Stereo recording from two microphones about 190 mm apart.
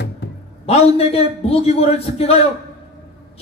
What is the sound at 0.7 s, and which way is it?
Speech, 30° left (ahead or behind).